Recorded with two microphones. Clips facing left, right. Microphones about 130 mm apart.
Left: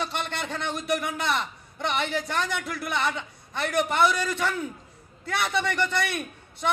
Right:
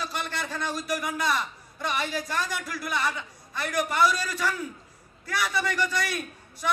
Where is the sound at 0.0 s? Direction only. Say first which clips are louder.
Left 2 dB; 25° left (ahead or behind).